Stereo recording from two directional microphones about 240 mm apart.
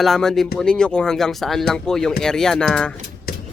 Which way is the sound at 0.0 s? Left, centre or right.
Centre.